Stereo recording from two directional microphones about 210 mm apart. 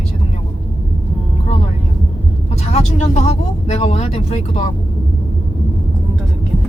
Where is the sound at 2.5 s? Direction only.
30° left (ahead or behind).